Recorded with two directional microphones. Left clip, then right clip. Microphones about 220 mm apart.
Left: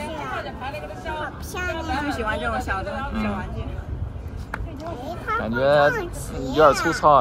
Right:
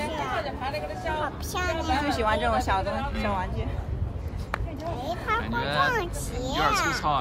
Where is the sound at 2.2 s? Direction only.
40° right (ahead or behind).